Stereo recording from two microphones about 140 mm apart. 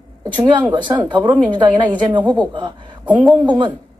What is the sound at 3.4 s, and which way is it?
Speech, 30° right (ahead or behind).